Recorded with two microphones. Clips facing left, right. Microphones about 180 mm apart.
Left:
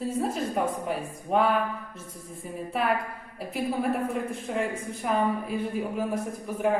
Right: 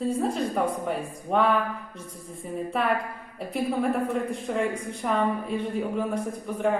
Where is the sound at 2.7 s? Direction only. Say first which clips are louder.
Even; centre (ahead or behind).